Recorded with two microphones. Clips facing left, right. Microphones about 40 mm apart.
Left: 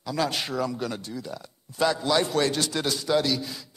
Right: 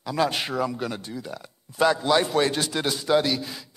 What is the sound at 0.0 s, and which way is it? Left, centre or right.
Speech, centre.